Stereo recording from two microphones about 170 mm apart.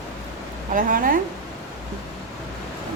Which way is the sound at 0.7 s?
55° right (ahead or behind).